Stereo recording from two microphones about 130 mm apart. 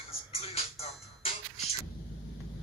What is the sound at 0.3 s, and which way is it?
Music, 50° left (ahead or behind).